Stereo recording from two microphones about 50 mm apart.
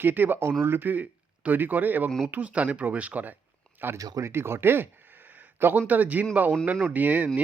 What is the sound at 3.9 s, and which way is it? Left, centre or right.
Speech, right.